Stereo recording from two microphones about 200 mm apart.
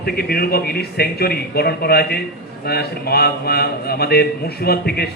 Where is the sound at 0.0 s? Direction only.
50° left (ahead or behind).